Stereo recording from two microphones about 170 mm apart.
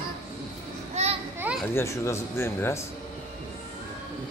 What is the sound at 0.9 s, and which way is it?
Children playing, 35° right (ahead or behind).